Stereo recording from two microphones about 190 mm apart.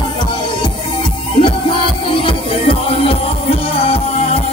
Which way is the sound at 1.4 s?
25° left (ahead or behind).